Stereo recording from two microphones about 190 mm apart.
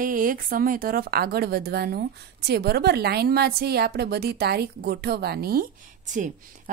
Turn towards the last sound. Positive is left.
turn(degrees=-40)  # may be behind; listen again after turning